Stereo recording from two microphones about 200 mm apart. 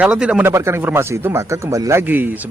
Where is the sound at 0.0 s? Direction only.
5° right (ahead or behind).